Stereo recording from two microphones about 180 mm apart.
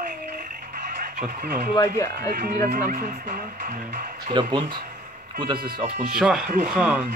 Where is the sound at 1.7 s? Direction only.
20° left (ahead or behind).